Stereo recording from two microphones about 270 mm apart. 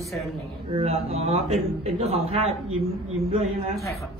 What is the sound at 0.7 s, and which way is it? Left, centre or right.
A man's voice, right.